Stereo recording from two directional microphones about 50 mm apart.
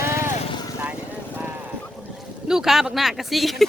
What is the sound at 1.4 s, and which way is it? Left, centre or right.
Boat, right.